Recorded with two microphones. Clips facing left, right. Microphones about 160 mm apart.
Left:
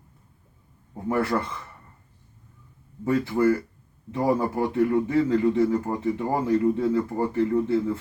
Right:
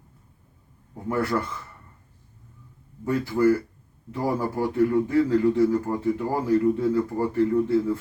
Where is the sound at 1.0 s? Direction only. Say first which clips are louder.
Left 1 dB; 25° left (ahead or behind).